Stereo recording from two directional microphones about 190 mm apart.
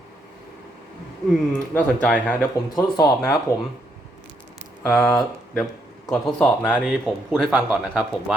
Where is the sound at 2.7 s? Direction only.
20° left (ahead or behind).